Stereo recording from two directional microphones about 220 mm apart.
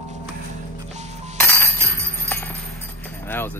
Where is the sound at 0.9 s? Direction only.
30° right (ahead or behind).